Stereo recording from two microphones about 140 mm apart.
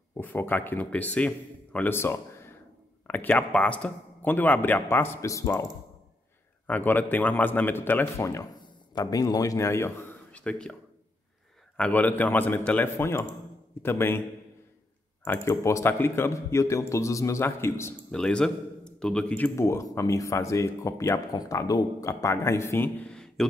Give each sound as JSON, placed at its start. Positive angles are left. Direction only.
{"t": 0.2, "sound": "a man's voice", "side_deg": 15}
{"t": 6.7, "sound": "a man's voice", "side_deg": 15}
{"t": 15.2, "sound": "speech", "side_deg": 15}
{"t": 18.1, "sound": "a man's voice", "side_deg": 5}
{"t": 19.5, "sound": "speech", "side_deg": 20}
{"t": 23.0, "sound": "a sound", "side_deg": 5}